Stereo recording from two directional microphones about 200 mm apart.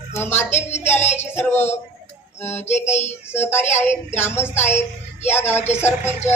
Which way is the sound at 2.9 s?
35° left (ahead or behind).